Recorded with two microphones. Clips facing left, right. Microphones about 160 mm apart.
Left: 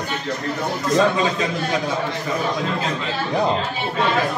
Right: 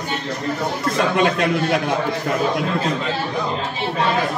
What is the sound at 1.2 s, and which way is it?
Speech, 70° right (ahead or behind).